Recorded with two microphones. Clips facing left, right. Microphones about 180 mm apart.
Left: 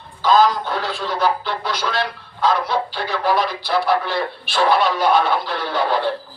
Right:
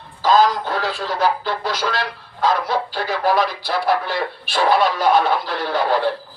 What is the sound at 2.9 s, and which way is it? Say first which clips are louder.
Speech: right 3 dB; 45° right (ahead or behind).